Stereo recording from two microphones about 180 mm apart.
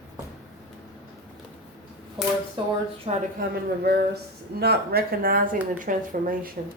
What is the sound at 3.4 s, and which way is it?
Speech, 60° right (ahead or behind).